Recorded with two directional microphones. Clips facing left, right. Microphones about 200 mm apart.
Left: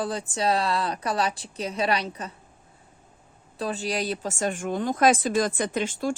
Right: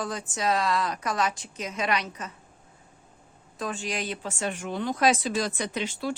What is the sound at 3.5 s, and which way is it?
Speech, 35° left (ahead or behind).